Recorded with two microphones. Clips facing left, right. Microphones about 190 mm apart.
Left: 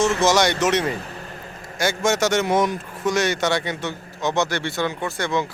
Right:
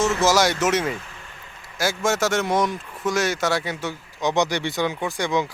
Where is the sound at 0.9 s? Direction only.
40° left (ahead or behind).